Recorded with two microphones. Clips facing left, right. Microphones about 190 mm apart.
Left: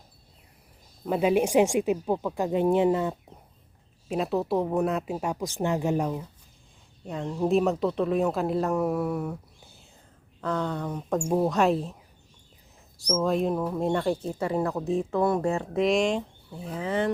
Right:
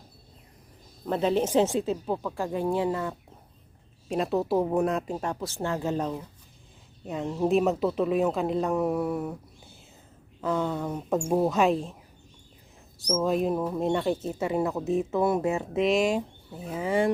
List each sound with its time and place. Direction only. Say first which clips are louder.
1.0 s speech: left 2 dB; 10° left (ahead or behind)
4.1 s speech: right 1 dB; centre (ahead or behind)
7.1 s speech: even; 5° right (ahead or behind)
10.4 s speech: right 1 dB; 5° right (ahead or behind)
13.1 s speech: even; 5° right (ahead or behind)
15.4 s speech: even; 20° right (ahead or behind)
15.8 s speech: even; 5° right (ahead or behind)